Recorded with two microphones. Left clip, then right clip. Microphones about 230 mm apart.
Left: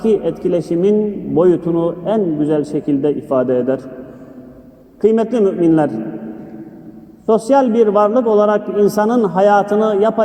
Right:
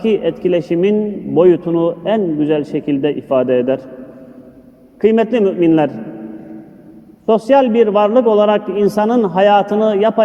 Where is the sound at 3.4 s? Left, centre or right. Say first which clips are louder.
Right 2 dB; right.